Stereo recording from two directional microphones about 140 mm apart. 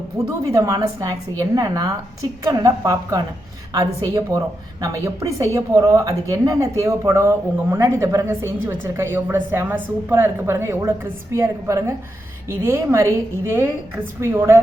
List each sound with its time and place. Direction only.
0.5 s a woman's voice: 25° right (ahead or behind)